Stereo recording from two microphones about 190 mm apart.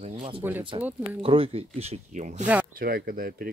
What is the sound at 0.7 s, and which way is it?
Speech, 25° right (ahead or behind).